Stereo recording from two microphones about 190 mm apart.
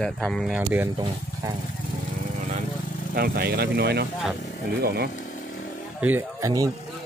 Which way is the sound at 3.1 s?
55° right (ahead or behind).